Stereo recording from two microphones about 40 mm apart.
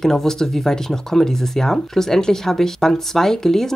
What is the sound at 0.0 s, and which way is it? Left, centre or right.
Speech, centre.